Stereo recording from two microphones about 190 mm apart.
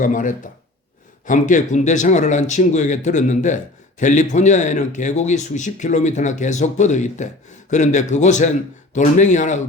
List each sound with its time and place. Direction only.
0.0 s speech: 45° left (ahead or behind)